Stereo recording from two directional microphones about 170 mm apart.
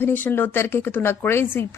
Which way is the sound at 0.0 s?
10° left (ahead or behind).